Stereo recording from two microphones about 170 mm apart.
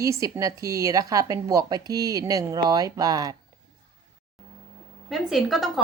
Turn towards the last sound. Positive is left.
turn(degrees=0)  # may be behind; listen again after turning